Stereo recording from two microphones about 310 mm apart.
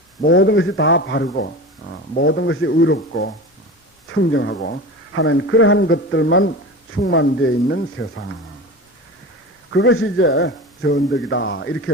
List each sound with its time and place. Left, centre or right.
0.3 s a man's voice: left
9.6 s a man's voice: left